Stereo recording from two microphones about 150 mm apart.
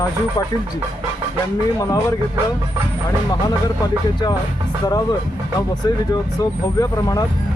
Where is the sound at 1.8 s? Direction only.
25° left (ahead or behind).